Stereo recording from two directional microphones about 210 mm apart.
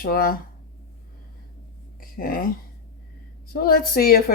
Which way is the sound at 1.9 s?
45° left (ahead or behind).